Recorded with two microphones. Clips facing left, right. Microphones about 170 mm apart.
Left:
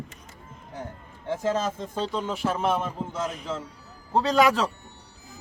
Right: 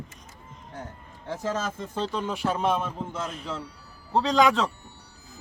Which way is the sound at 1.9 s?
10° left (ahead or behind).